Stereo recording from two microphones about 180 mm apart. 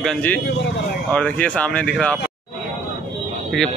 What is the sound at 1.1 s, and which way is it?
Speech, 5° left (ahead or behind).